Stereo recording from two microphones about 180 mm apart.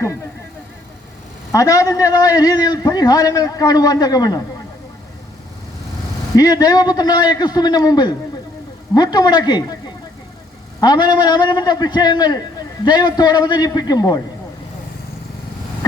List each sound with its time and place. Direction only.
1.5 s a man's voice: 20° left (ahead or behind)
6.3 s a man's voice: 20° left (ahead or behind)
10.8 s a man's voice: 25° left (ahead or behind)